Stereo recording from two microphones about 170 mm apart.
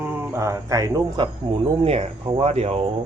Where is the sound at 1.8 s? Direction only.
35° right (ahead or behind).